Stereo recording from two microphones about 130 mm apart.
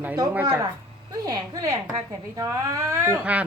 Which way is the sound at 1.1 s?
30° right (ahead or behind).